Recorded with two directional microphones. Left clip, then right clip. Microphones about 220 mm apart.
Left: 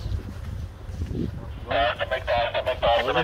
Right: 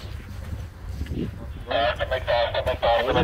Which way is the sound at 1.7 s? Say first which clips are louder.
Even; 40° right (ahead or behind).